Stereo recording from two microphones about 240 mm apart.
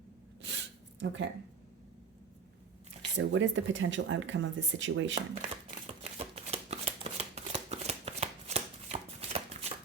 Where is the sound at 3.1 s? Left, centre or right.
Right.